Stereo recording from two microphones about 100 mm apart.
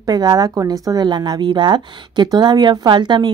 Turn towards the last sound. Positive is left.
turn(degrees=-50)  # may be behind; listen again after turning